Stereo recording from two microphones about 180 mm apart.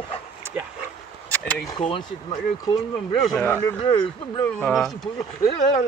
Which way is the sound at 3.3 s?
10° left (ahead or behind).